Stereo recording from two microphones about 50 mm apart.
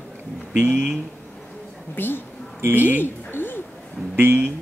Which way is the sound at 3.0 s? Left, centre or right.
Left.